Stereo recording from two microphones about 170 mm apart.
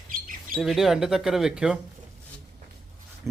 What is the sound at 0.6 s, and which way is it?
Speech, centre (ahead or behind).